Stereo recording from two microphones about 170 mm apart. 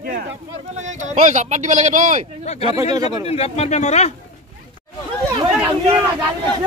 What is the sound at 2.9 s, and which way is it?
Speech, 20° right (ahead or behind).